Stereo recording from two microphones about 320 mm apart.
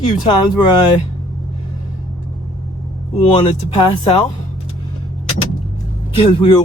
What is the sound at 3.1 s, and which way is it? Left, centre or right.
Music, centre.